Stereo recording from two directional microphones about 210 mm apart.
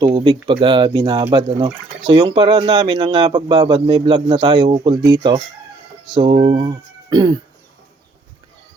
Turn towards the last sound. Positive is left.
turn(degrees=-20)  # may be behind; listen again after turning